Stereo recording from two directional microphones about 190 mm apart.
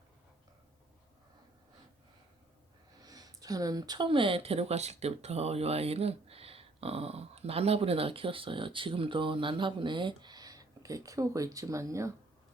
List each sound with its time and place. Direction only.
3.0 s speech: 20° right (ahead or behind)